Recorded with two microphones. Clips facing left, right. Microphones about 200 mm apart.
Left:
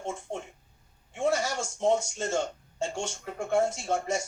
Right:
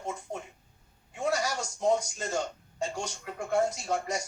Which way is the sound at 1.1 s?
25° left (ahead or behind).